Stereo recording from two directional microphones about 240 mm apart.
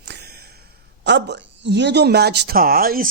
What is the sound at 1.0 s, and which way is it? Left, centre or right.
Speech, right.